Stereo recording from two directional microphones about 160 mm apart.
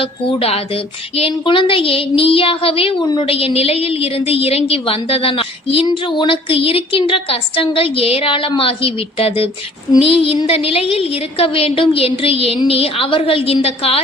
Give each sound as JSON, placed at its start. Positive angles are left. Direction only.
{"t": 0.0, "sound": "speech", "side_deg": 35}